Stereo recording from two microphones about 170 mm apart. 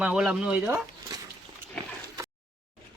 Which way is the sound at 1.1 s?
20° right (ahead or behind).